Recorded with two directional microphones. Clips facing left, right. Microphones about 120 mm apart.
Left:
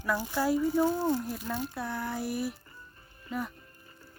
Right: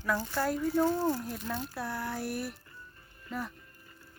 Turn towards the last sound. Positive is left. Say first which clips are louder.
# left 2 dB
turn(degrees=25)  # may be behind; listen again after turning